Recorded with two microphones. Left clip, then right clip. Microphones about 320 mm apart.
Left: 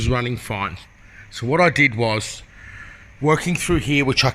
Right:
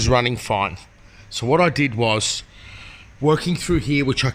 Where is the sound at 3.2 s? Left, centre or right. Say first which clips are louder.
Even; centre.